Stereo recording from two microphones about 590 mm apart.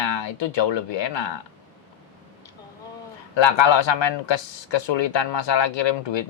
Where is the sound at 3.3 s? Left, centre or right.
Left.